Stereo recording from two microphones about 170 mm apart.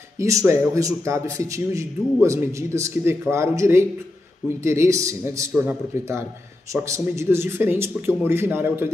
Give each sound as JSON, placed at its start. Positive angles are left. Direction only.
{"t": 0.2, "sound": "a man's voice", "side_deg": -20}